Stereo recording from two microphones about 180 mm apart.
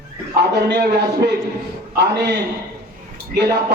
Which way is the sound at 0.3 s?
70° right (ahead or behind).